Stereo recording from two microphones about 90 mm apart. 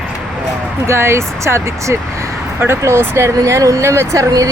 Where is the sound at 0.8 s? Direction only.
30° right (ahead or behind).